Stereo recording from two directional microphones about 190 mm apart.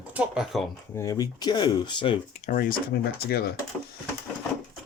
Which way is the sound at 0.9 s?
15° left (ahead or behind).